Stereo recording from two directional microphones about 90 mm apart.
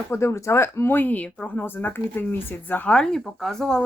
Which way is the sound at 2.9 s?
5° left (ahead or behind).